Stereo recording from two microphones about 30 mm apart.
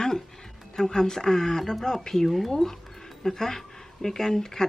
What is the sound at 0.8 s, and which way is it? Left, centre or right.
Speech, left.